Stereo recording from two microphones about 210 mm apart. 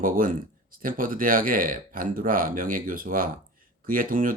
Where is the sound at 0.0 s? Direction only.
40° right (ahead or behind).